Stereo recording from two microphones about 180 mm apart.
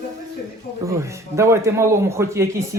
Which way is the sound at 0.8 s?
15° right (ahead or behind).